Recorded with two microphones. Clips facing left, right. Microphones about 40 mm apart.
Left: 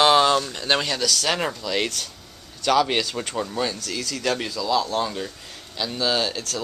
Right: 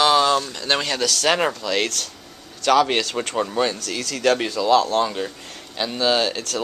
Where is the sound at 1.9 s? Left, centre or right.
Centre.